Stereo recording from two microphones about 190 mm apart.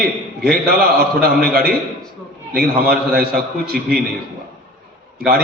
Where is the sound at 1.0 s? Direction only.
50° right (ahead or behind).